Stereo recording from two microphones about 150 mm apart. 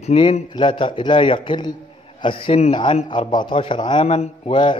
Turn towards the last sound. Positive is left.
turn(degrees=35)  # may be behind; listen again after turning